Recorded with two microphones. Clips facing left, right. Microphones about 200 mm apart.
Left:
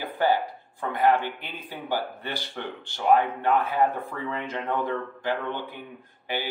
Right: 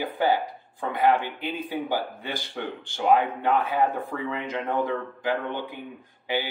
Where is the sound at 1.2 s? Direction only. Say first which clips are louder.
Right 4 dB; 15° right (ahead or behind).